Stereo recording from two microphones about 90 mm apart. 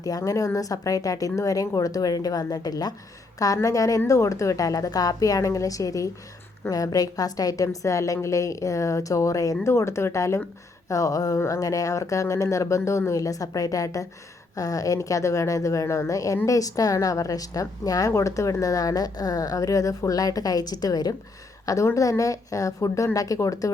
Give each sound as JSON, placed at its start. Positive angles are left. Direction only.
{"t": 0.0, "sound": "a woman's voice", "side_deg": 40}